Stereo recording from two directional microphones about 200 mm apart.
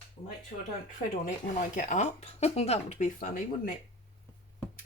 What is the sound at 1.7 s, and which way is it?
Speech, 40° left (ahead or behind).